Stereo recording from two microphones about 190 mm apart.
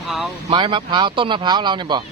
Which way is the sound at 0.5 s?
25° right (ahead or behind).